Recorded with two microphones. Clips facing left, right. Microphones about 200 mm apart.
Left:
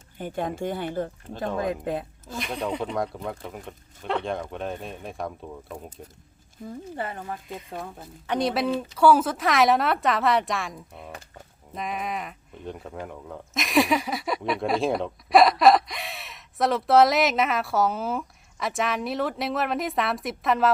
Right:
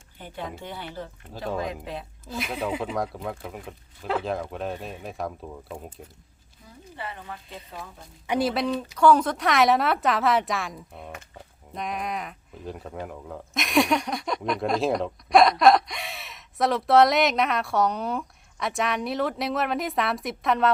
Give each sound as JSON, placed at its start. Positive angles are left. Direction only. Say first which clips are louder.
{"t": 0.2, "sound": "speech", "louder": "left 7 dB", "side_deg": 50}
{"t": 2.2, "sound": "speech", "louder": "right 5 dB", "side_deg": -5}
{"t": 6.7, "sound": "speech", "louder": "left 6 dB", "side_deg": 45}
{"t": 8.3, "sound": "speech", "louder": "even", "side_deg": -5}